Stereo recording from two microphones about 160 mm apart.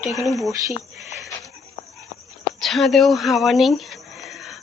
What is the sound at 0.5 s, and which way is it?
Speech, 20° right (ahead or behind).